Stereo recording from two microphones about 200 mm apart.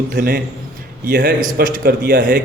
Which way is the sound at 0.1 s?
50° right (ahead or behind).